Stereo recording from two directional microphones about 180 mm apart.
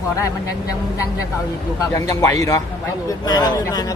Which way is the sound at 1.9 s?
20° left (ahead or behind).